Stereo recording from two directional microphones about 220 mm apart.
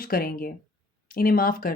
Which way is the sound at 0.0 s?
40° left (ahead or behind).